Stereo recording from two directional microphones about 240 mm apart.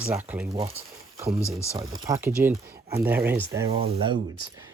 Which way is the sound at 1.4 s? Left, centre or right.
Centre.